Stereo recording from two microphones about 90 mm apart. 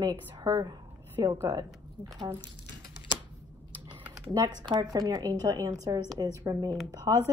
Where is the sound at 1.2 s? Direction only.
45° right (ahead or behind).